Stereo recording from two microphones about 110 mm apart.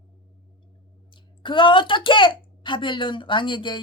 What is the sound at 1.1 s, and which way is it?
Speech, 45° left (ahead or behind).